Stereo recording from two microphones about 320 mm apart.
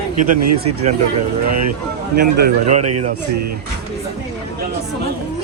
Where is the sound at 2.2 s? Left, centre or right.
Right.